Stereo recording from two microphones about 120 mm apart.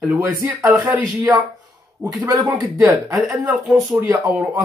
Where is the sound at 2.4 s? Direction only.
30° right (ahead or behind).